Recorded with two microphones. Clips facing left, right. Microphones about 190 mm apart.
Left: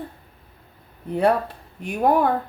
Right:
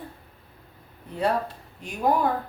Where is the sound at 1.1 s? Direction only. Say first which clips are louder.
Left 6 dB; 60° left (ahead or behind).